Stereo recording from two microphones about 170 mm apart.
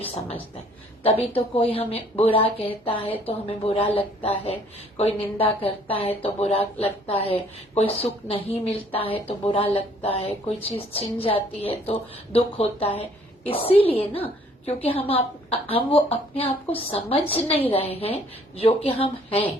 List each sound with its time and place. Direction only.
0.0 s a woman's voice: 35° left (ahead or behind)